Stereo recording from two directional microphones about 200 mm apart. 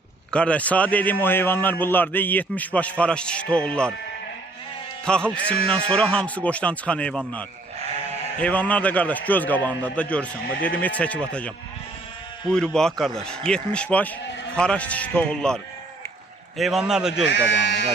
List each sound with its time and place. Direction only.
0.3 s a man's voice: 5° left (ahead or behind)
5.0 s a man's voice: 5° left (ahead or behind)
17.2 s speech: 60° left (ahead or behind)